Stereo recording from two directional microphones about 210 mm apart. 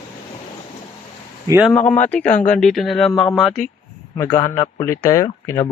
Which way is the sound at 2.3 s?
35° left (ahead or behind).